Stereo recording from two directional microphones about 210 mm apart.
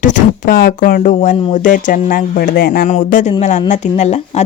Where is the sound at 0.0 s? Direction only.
40° left (ahead or behind).